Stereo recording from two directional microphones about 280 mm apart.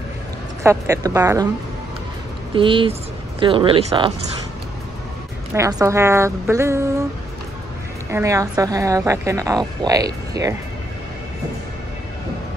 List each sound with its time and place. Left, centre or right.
0.7 s a woman's voice: centre
2.5 s speech: centre
5.5 s a woman's voice: centre
8.1 s a woman's voice: centre